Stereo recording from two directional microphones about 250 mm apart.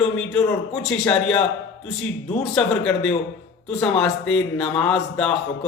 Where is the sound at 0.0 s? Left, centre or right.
Centre.